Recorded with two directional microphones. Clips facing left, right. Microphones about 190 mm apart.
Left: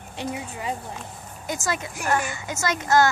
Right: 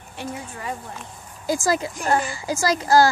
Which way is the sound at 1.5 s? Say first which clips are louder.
Right 6 dB; 30° right (ahead or behind).